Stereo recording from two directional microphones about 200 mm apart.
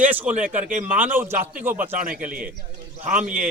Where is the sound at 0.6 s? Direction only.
40° right (ahead or behind).